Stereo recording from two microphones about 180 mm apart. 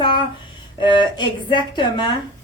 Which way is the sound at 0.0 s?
25° left (ahead or behind).